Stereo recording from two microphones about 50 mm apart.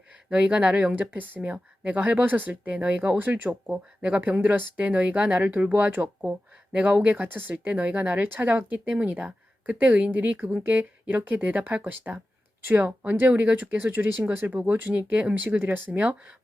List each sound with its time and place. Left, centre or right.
0.3 s speech: right
0.9 s a woman's voice: right
7.7 s a woman's voice: right
13.8 s a woman's voice: right
15.1 s speech: right
15.4 s a woman's voice: right
15.9 s speech: right